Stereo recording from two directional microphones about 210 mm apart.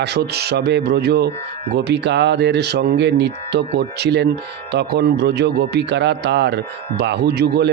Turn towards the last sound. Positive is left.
turn(degrees=-50)  # may be behind; listen again after turning